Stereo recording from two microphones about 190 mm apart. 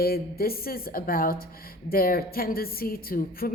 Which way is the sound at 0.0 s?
55° left (ahead or behind).